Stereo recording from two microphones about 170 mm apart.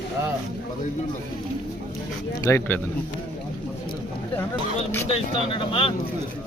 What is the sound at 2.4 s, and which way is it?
Speech, 15° left (ahead or behind).